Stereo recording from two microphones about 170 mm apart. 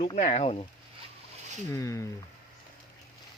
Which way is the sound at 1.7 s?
20° left (ahead or behind).